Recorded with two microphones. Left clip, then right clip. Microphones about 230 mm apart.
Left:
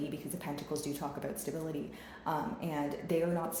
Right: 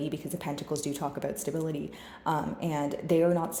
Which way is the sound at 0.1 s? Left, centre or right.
Right.